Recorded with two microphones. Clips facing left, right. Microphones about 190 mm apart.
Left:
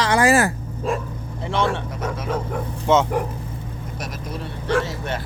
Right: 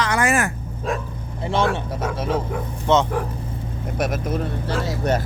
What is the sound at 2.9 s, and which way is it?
Speech, 10° left (ahead or behind).